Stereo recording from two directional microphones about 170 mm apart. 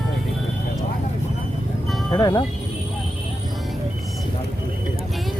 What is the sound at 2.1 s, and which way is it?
Speech, 25° left (ahead or behind).